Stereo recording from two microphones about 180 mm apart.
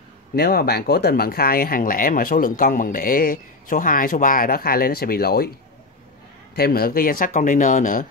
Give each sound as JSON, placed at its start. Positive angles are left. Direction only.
{"t": 0.4, "sound": "speech", "side_deg": 60}
{"t": 6.5, "sound": "speech", "side_deg": 60}